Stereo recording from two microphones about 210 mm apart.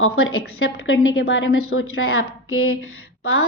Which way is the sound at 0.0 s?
80° left.